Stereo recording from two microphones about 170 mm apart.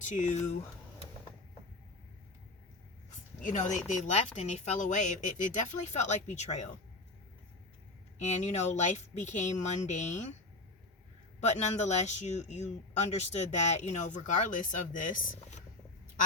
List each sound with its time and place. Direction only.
0.0 s speech: 45° left (ahead or behind)
3.1 s speech: 45° left (ahead or behind)
8.2 s speech: 40° left (ahead or behind)
11.3 s speech: 45° left (ahead or behind)